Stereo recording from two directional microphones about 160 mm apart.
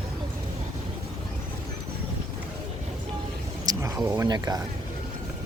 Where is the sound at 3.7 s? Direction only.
25° right (ahead or behind).